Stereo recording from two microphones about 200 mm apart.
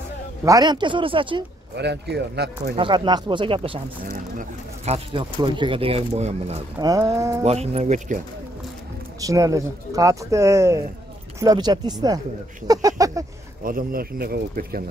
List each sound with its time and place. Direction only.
0.5 s speech: 20° right (ahead or behind)
1.8 s speech: 55° right (ahead or behind)
2.7 s speech: 25° right (ahead or behind)
4.8 s speech: 30° right (ahead or behind)
6.8 s speech: 20° right (ahead or behind)
7.4 s speech: 30° right (ahead or behind)
9.2 s speech: 15° right (ahead or behind)
13.7 s speech: 45° right (ahead or behind)